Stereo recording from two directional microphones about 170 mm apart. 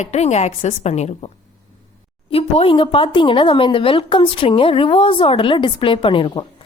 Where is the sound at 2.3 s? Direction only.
35° left (ahead or behind).